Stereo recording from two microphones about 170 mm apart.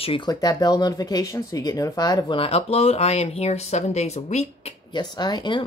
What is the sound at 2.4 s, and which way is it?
Speech, 35° left (ahead or behind).